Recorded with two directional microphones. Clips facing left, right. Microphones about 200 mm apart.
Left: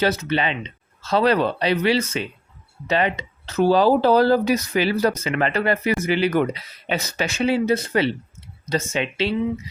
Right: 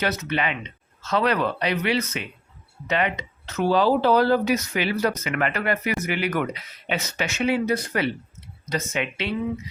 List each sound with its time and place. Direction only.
0.0 s speech: 30° left (ahead or behind)